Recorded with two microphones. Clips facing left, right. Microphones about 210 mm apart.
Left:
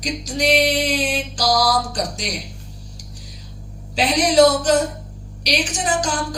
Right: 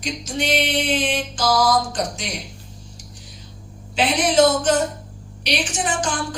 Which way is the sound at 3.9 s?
40° left (ahead or behind).